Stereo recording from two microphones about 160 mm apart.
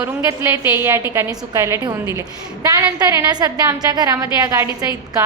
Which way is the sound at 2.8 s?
20° right (ahead or behind).